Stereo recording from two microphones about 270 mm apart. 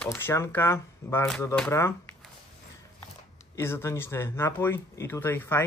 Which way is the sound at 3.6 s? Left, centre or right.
Centre.